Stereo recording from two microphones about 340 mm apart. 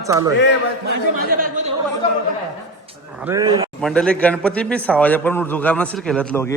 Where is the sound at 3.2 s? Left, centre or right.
Centre.